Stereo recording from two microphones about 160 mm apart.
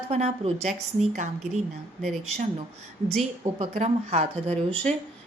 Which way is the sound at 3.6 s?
40° right (ahead or behind).